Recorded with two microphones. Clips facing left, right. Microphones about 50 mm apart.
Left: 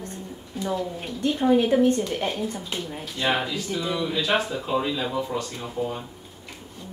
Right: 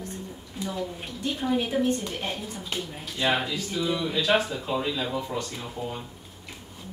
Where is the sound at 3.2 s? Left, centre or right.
Centre.